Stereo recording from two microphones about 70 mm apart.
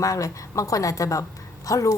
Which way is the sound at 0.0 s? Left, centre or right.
Left.